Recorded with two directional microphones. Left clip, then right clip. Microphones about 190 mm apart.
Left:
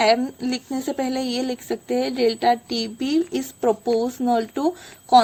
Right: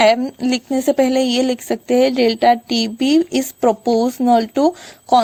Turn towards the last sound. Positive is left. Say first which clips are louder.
# right 1 dB
turn(degrees=-35)  # may be behind; listen again after turning